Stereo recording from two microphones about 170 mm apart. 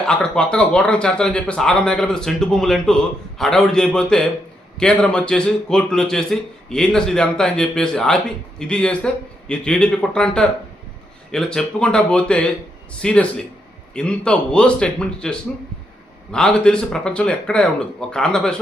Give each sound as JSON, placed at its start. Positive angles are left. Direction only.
{"t": 0.0, "sound": "a man's voice", "side_deg": 5}